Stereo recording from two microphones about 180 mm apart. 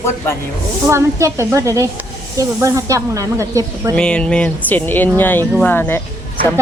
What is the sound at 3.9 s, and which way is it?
Speech, 5° left (ahead or behind).